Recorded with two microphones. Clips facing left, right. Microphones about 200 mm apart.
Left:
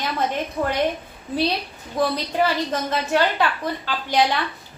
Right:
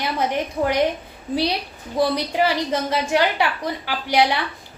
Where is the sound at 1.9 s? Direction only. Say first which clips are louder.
Right 2 dB; 10° right (ahead or behind).